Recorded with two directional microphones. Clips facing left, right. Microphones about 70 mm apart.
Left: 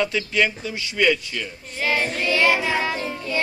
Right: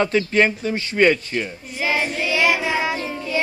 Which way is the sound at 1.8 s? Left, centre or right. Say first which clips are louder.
Right 1 dB; centre.